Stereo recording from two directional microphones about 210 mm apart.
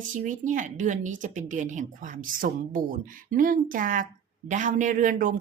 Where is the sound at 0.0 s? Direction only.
40° right (ahead or behind).